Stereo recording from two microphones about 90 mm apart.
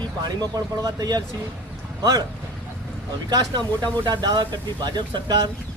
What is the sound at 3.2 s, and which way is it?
Speech, 50° right (ahead or behind).